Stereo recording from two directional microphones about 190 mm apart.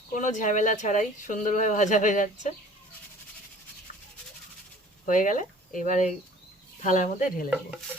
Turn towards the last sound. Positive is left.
turn(degrees=45)  # may be behind; listen again after turning